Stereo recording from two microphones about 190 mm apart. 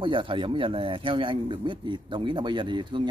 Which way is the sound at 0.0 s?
25° right (ahead or behind).